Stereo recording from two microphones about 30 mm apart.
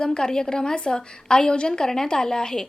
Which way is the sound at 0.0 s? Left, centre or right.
Left.